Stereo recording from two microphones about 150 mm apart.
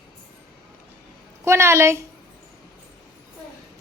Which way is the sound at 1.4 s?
20° right (ahead or behind).